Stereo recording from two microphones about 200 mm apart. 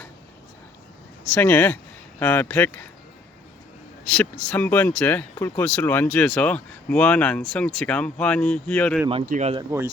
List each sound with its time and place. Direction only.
1.3 s speech: 10° left (ahead or behind)
4.1 s speech: 5° left (ahead or behind)
9.2 s speech: 35° right (ahead or behind)